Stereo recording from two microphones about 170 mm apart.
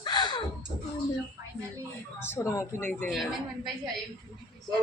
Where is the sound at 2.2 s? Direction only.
15° left (ahead or behind).